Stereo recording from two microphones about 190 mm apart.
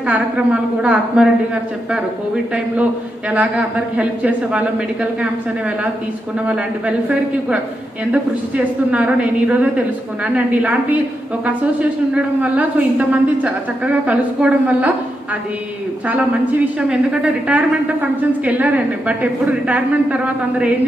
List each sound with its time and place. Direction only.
0.0 s a woman's voice: 5° right (ahead or behind)
6.4 s a woman's voice: 5° right (ahead or behind)
16.1 s a woman's voice: 5° right (ahead or behind)